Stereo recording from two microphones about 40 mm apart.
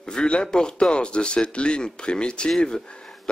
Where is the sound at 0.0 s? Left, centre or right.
Left.